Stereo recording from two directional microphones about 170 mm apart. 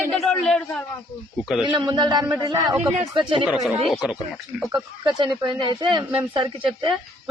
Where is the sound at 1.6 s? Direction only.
25° right (ahead or behind).